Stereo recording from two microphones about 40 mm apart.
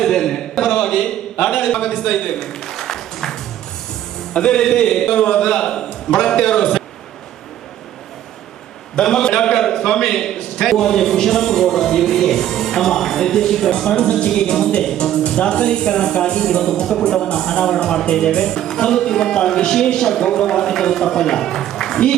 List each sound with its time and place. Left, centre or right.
0.0 s a sound: centre
4.4 s speech: centre
9.0 s speech: centre
13.9 s speech: left